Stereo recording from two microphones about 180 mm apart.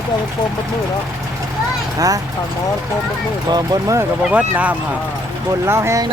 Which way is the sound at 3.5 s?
20° right (ahead or behind).